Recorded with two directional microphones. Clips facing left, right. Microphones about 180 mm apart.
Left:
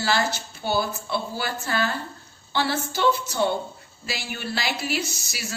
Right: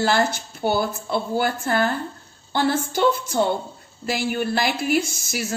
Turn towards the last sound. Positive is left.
turn(degrees=-50)  # may be behind; listen again after turning